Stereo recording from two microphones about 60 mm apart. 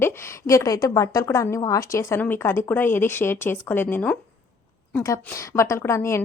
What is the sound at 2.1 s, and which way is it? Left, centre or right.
Speech, left.